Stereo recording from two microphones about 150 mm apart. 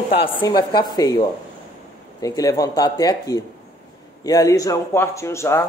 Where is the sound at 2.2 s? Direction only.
25° left (ahead or behind).